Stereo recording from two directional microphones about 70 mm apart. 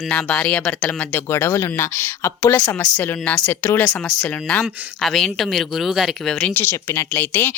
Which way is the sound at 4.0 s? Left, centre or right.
Centre.